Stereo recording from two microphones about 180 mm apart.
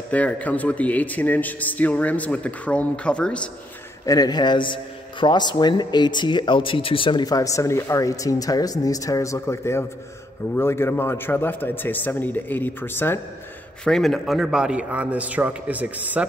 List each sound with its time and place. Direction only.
0.1 s a man's voice: 10° left (ahead or behind)
4.0 s a man's voice: 20° left (ahead or behind); by 16.3 s 10° right (ahead or behind)